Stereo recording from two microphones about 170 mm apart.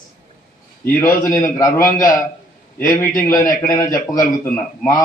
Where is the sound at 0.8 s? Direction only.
20° left (ahead or behind).